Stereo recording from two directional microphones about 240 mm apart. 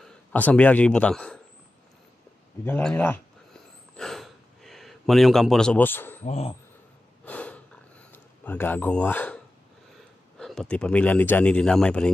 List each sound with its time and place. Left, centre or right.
0.0 s a man's voice: centre
2.6 s speech: centre
3.9 s a sound: centre
6.2 s speech: left
7.2 s snort: centre
8.1 s speech: centre
10.4 s speech: centre